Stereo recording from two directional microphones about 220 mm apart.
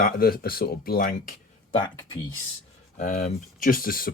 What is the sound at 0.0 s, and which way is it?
Speech, 45° left (ahead or behind).